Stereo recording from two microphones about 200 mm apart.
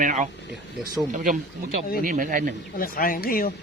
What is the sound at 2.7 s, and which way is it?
Speech, 45° left (ahead or behind).